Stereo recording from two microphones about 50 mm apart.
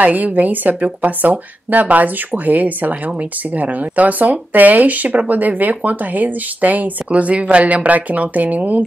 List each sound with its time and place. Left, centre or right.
0.0 s speech: right